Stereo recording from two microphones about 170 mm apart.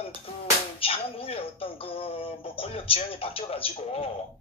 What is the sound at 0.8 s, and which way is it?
A woman's voice, 35° left (ahead or behind).